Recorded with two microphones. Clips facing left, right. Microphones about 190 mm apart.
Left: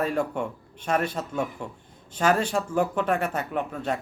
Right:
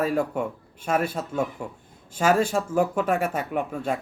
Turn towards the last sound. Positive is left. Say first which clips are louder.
# right 2 dB
turn(degrees=-10)  # may be behind; listen again after turning